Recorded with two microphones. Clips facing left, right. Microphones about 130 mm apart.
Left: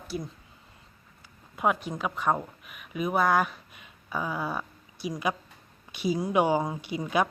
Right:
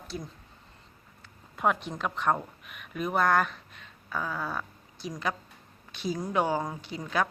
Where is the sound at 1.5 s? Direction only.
5° left (ahead or behind).